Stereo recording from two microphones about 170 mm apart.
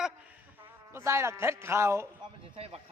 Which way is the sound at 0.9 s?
15° right (ahead or behind).